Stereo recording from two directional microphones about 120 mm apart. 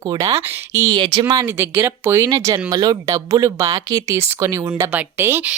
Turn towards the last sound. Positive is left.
turn(degrees=-15)  # may be behind; listen again after turning